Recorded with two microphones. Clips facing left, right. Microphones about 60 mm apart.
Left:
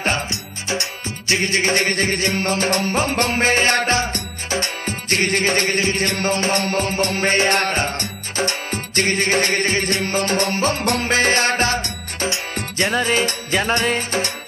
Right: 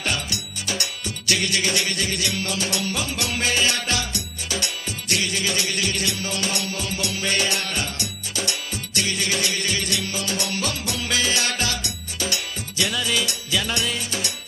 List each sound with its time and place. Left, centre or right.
0.0 s music: left